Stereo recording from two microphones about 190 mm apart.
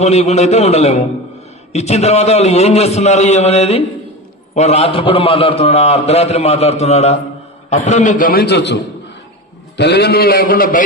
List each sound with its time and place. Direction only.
0.0 s a man's voice: 35° left (ahead or behind)